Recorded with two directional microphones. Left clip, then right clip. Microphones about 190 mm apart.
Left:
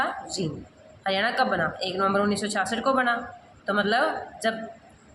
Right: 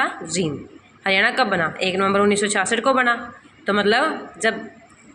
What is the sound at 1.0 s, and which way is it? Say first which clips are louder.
Speech: right 6 dB; 20° right (ahead or behind).